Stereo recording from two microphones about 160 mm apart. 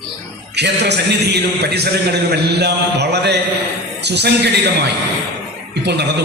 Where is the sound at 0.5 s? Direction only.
90° right.